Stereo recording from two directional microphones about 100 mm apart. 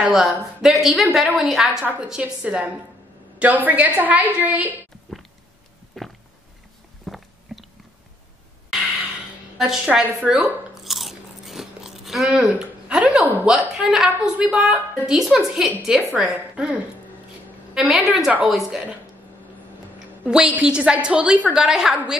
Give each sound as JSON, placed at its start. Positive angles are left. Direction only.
{"t": 0.1, "sound": "a woman's voice", "side_deg": 0}
{"t": 6.0, "sound": "a woman's voice", "side_deg": 0}
{"t": 7.1, "sound": "biting", "side_deg": 5}
{"t": 9.6, "sound": "a woman's voice", "side_deg": -5}
{"t": 10.7, "sound": "crunch", "side_deg": 0}
{"t": 13.5, "sound": "a woman's voice", "side_deg": -5}
{"t": 20.2, "sound": "a woman's voice", "side_deg": -10}